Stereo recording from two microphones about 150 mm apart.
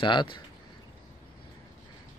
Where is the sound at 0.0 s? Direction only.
35° left (ahead or behind).